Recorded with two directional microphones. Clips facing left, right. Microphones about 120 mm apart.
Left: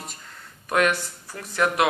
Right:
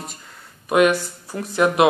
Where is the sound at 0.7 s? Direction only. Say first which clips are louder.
Right 6 dB; 15° right (ahead or behind).